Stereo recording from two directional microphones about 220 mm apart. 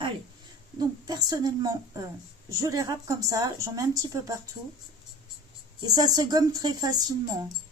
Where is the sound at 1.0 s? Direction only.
15° right (ahead or behind).